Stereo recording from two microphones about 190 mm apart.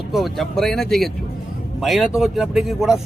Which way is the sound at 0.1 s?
Centre (ahead or behind).